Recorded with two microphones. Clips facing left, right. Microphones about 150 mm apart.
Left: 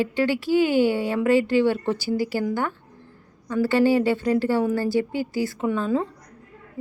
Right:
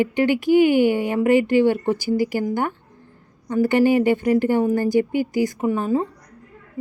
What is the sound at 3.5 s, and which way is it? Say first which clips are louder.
A woman's voice: right 2 dB; 20° right (ahead or behind).